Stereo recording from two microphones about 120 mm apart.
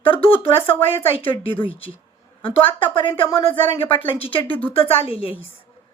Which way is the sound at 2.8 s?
45° left (ahead or behind).